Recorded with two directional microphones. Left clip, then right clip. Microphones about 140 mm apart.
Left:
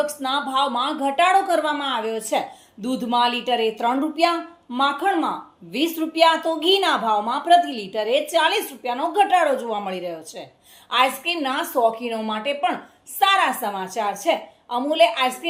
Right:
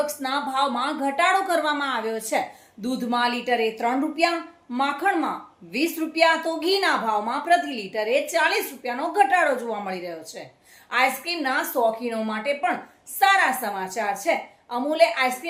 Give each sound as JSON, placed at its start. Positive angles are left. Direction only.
{"t": 0.0, "sound": "a woman's voice", "side_deg": 15}